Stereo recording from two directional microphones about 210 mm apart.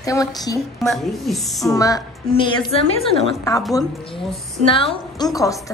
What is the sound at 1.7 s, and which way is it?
A woman's voice, 15° left (ahead or behind).